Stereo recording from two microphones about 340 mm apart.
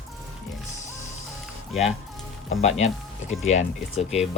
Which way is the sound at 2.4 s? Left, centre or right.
Centre.